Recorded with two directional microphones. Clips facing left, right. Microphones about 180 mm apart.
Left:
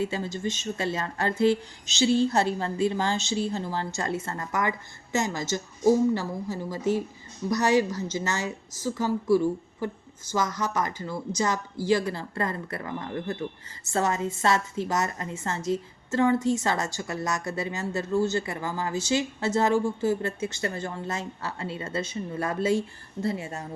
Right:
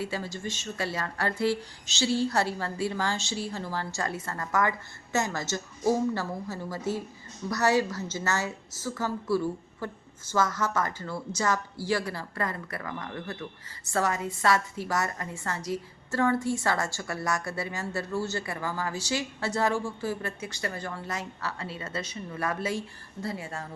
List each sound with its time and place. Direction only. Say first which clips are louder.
0.0 s a woman's voice: left 4 dB; 20° left (ahead or behind)